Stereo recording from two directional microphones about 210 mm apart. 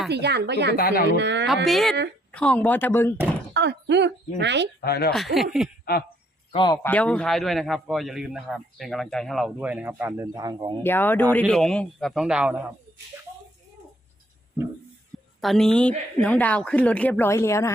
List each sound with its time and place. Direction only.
0.1 s speech: 50° right (ahead or behind)
0.8 s speech: 45° left (ahead or behind)
1.0 s speech: 55° right (ahead or behind)
1.6 s a man's voice: centre (ahead or behind)
3.5 s speech: 55° right (ahead or behind)
4.8 s speech: 50° left (ahead or behind)
5.1 s a man's voice: centre (ahead or behind)
5.9 s speech: 45° left (ahead or behind)
6.5 s speech: 20° left (ahead or behind)
6.8 s a man's voice: 5° left (ahead or behind); by 10.8 s 20° right (ahead or behind)
10.8 s a man's voice: 10° left (ahead or behind); by 12.6 s 5° right (ahead or behind)
15.4 s speech: centre (ahead or behind)